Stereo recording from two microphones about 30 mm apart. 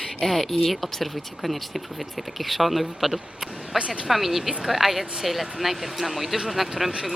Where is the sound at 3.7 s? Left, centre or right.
Right.